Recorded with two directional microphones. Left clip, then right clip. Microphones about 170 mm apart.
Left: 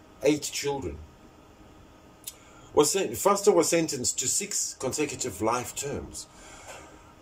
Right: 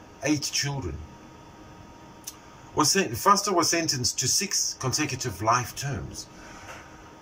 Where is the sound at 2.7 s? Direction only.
25° left (ahead or behind).